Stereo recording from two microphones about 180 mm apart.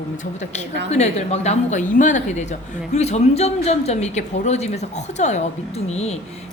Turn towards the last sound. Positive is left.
turn(degrees=35)  # may be behind; listen again after turning